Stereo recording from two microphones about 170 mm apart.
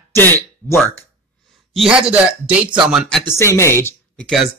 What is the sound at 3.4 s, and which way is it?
Speech, 15° left (ahead or behind).